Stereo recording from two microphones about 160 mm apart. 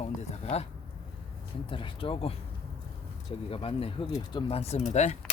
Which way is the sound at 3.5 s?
35° left (ahead or behind).